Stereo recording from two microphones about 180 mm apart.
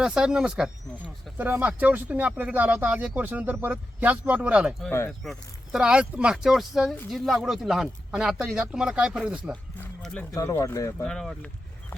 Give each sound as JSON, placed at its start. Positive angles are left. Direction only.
{"t": 0.0, "sound": "speech", "side_deg": -5}
{"t": 4.9, "sound": "speech", "side_deg": 10}
{"t": 5.2, "sound": "speech", "side_deg": 0}
{"t": 10.3, "sound": "speech", "side_deg": 20}
{"t": 11.0, "sound": "speech", "side_deg": 5}